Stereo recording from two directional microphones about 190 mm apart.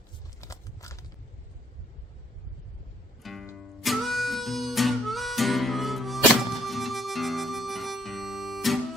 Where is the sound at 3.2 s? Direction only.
Centre (ahead or behind).